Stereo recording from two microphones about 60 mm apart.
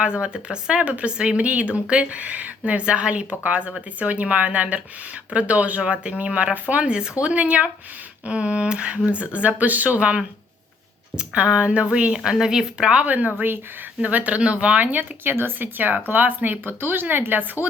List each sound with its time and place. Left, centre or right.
0.0 s speech: centre
11.2 s speech: centre